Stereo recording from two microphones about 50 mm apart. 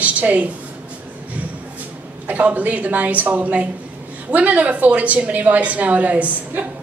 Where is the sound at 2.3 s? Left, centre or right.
Right.